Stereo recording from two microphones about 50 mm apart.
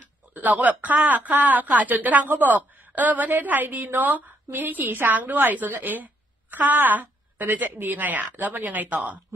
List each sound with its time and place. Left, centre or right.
0.3 s a woman's voice: right